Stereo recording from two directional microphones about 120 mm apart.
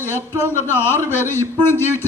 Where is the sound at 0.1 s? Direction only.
20° right (ahead or behind).